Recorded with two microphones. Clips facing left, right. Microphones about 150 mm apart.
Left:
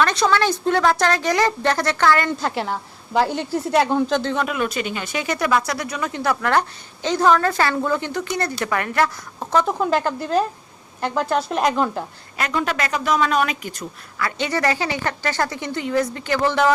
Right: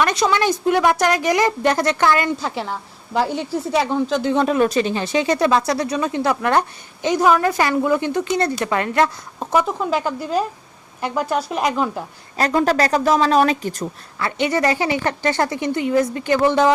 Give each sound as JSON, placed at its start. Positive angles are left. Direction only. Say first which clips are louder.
{"t": 0.0, "sound": "speech", "louder": "even", "side_deg": -15}
{"t": 2.4, "sound": "a woman's voice", "louder": "left 1 dB", "side_deg": 0}
{"t": 4.4, "sound": "a woman's voice", "louder": "right 6 dB", "side_deg": -35}
{"t": 9.7, "sound": "a woman's voice", "louder": "left 1 dB", "side_deg": 0}
{"t": 12.4, "sound": "a woman's voice", "louder": "right 6 dB", "side_deg": -40}